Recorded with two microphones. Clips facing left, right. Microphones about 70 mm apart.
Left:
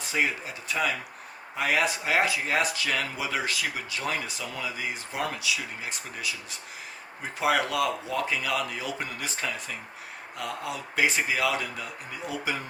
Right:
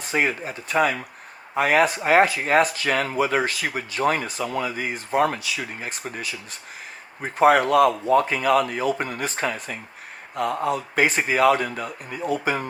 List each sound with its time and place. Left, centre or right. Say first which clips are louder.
0.0 s speech: right 5 dB; right